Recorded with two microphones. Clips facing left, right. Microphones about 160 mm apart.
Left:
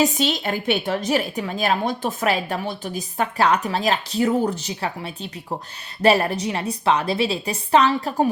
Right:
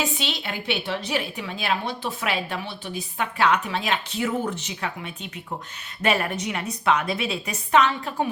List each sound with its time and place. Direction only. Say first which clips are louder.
0.0 s a woman's voice: left 8 dB; 40° left (ahead or behind)